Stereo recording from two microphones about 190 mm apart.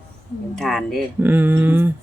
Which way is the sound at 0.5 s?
Centre (ahead or behind).